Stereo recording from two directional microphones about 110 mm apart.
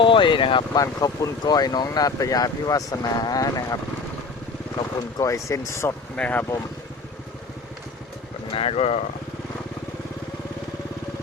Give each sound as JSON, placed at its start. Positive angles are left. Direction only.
{"t": 0.0, "sound": "speech", "side_deg": 50}
{"t": 0.7, "sound": "speech", "side_deg": 35}
{"t": 5.1, "sound": "speech", "side_deg": 30}
{"t": 6.1, "sound": "speech", "side_deg": 10}
{"t": 8.5, "sound": "speech", "side_deg": 65}